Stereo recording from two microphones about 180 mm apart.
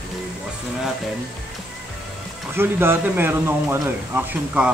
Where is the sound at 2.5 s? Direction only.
10° right (ahead or behind).